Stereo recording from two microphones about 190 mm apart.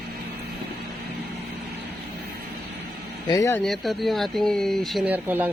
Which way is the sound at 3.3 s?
15° left (ahead or behind).